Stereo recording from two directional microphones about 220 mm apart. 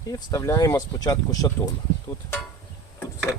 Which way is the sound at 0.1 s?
15° left (ahead or behind).